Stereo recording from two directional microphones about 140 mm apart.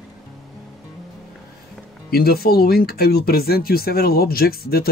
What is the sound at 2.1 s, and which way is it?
Speech, 90° left.